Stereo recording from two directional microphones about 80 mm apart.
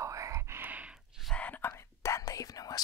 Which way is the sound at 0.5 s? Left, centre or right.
Right.